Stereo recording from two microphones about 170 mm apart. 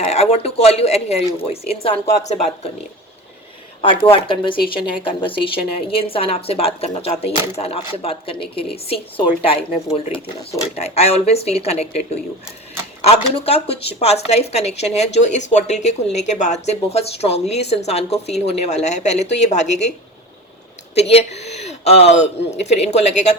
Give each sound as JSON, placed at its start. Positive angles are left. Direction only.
{"t": 0.0, "sound": "a woman's voice", "side_deg": 35}
{"t": 3.8, "sound": "a woman's voice", "side_deg": 35}
{"t": 20.9, "sound": "a woman's voice", "side_deg": 40}